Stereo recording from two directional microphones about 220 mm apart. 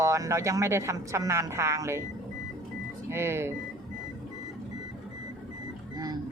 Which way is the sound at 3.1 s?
10° right (ahead or behind).